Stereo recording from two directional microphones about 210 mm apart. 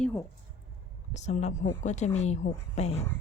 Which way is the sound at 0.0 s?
10° left (ahead or behind).